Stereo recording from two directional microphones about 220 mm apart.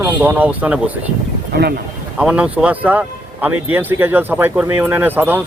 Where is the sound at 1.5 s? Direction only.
45° right (ahead or behind).